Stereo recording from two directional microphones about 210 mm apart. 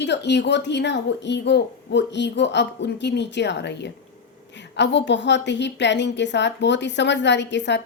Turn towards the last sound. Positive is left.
turn(degrees=55)  # may be behind; listen again after turning